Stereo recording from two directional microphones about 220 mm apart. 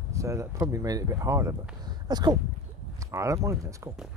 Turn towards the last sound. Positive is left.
turn(degrees=-15)  # may be behind; listen again after turning